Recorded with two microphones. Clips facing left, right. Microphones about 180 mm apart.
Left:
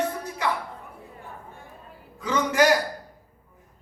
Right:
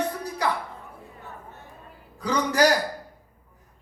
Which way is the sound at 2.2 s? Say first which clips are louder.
Even; 35° right (ahead or behind).